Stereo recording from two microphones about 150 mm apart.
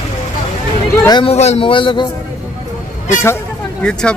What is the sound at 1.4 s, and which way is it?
Speech, 45° left (ahead or behind).